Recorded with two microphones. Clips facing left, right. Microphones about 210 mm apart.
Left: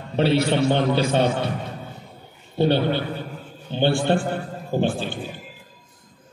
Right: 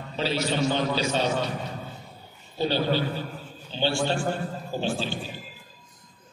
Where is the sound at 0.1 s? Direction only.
60° left (ahead or behind).